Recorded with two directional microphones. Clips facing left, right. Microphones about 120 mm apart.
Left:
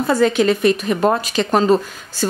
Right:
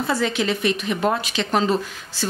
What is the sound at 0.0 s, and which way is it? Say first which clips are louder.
Speech: left 7 dB; 45° left (ahead or behind).